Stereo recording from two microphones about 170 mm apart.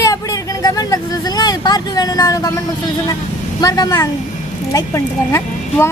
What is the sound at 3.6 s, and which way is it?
A woman's voice, 25° left (ahead or behind).